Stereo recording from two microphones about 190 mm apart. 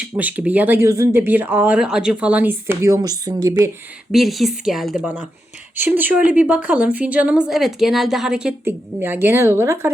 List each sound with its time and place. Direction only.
0.0 s a woman's voice: 10° right (ahead or behind)
4.1 s a woman's voice: centre (ahead or behind)